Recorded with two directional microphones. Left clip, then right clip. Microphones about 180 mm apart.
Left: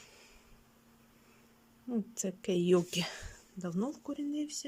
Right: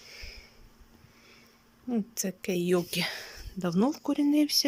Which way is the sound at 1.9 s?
5° left (ahead or behind).